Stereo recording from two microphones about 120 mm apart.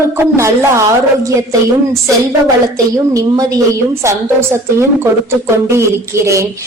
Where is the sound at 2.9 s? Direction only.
30° right (ahead or behind).